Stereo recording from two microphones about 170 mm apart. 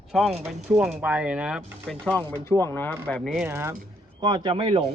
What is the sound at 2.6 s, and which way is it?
Speech, 10° left (ahead or behind).